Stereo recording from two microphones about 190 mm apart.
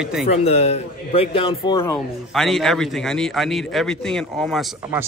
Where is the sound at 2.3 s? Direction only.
Centre (ahead or behind).